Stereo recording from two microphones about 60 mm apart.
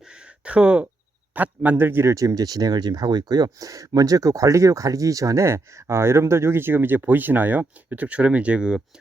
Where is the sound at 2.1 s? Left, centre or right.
Right.